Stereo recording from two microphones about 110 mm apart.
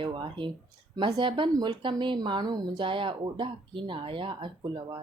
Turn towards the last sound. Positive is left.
turn(degrees=-45)  # may be behind; listen again after turning